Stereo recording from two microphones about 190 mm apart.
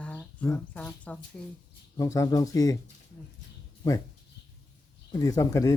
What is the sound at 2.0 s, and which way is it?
Speech, 15° left (ahead or behind).